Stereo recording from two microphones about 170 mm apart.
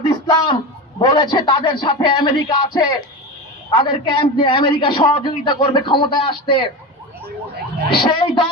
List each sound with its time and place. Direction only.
0.3 s a man's voice: 25° left (ahead or behind)
7.9 s a man's voice: 30° left (ahead or behind)